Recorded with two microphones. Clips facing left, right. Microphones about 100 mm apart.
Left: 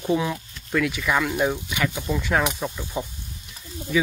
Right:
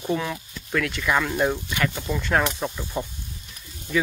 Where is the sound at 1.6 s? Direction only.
15° left (ahead or behind).